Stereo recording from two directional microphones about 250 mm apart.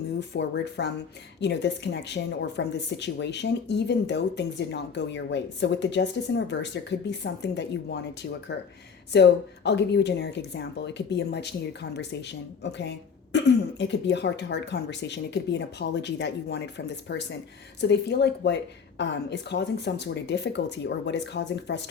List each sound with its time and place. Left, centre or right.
0.2 s speech: left